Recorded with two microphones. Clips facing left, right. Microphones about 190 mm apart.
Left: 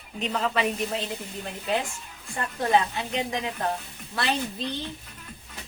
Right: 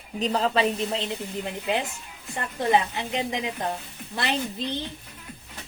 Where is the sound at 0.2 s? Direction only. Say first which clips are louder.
Right 3 dB; 35° right (ahead or behind).